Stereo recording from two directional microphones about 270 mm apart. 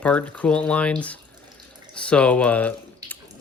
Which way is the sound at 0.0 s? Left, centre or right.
Centre.